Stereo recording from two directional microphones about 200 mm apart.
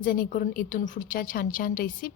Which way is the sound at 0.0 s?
45° left (ahead or behind).